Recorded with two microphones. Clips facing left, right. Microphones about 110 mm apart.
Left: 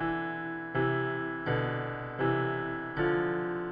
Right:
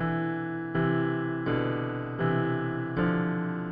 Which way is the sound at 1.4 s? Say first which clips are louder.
Right 4 dB; 50° right (ahead or behind).